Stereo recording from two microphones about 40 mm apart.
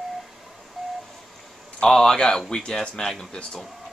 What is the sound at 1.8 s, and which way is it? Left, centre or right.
Speech, centre.